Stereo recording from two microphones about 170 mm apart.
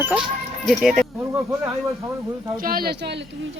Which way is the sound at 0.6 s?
Centre (ahead or behind).